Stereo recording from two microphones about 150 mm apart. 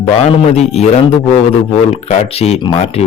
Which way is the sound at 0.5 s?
45° left (ahead or behind).